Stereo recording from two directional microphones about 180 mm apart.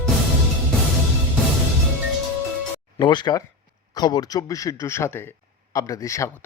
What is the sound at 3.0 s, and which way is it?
A man's voice, 25° left (ahead or behind).